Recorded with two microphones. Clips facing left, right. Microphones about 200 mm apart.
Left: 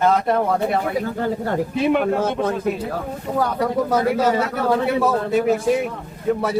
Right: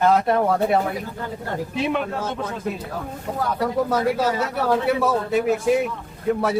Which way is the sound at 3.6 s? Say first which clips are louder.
Right 1 dB; centre (ahead or behind).